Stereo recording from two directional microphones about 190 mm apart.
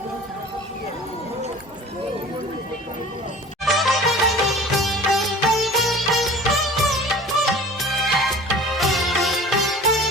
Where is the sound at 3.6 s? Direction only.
Centre (ahead or behind).